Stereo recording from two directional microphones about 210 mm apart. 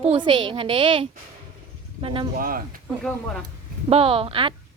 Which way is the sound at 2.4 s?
40° right (ahead or behind).